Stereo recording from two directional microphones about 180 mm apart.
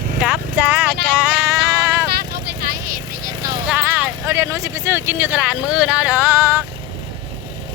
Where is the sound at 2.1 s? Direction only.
60° right (ahead or behind).